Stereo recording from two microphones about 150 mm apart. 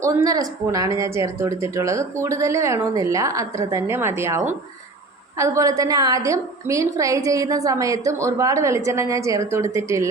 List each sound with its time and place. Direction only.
0.0 s a woman's voice: 20° right (ahead or behind)